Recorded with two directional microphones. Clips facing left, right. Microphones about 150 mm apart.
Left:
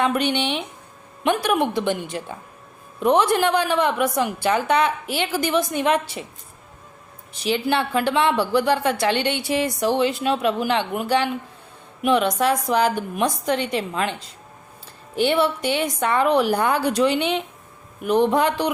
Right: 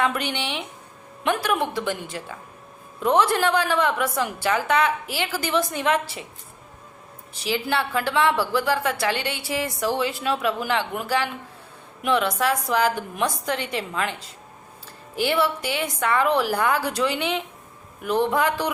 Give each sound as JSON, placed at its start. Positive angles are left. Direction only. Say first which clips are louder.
{"t": 0.0, "sound": "a woman's voice", "louder": "left 4 dB", "side_deg": 20}
{"t": 7.4, "sound": "a woman's voice", "louder": "left 3 dB", "side_deg": 20}